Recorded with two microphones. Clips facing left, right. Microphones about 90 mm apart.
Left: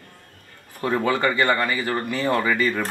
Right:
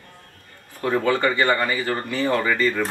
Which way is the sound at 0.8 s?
5° left (ahead or behind).